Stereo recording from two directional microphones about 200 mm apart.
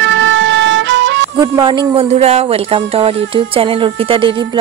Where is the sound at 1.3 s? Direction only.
25° right (ahead or behind).